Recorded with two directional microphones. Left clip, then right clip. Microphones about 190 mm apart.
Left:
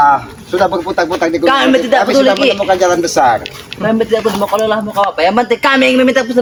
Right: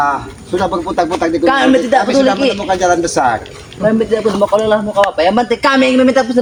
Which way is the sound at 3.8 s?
10° left (ahead or behind).